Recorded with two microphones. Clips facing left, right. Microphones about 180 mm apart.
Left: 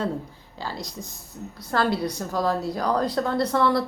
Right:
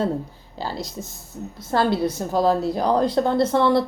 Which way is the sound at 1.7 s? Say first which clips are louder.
Right 3 dB; 25° right (ahead or behind).